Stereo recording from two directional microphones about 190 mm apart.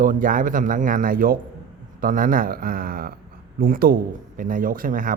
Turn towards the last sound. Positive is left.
turn(degrees=-45)  # may be behind; listen again after turning